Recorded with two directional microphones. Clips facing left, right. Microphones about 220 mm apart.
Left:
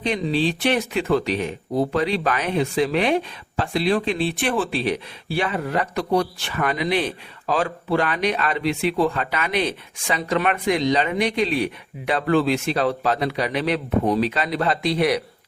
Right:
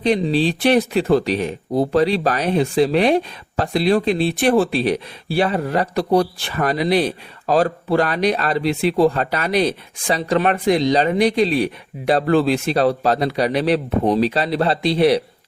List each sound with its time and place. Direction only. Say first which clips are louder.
0.0 s speech: right 4 dB; 35° right (ahead or behind)